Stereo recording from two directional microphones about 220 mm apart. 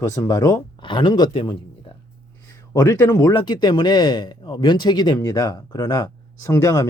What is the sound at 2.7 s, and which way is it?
Speech, 15° left (ahead or behind).